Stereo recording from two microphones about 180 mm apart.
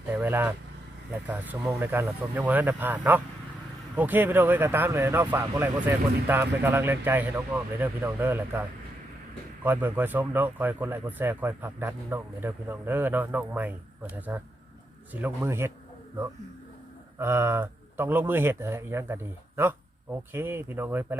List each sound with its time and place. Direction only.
0.1 s speech: 10° right (ahead or behind)
9.6 s speech: 10° right (ahead or behind)
17.2 s speech: 15° right (ahead or behind)